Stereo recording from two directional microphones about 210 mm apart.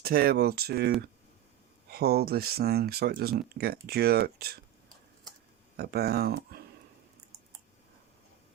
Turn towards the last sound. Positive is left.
turn(degrees=-45)  # may be behind; listen again after turning